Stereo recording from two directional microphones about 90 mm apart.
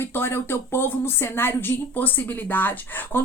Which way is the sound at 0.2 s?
25° left (ahead or behind).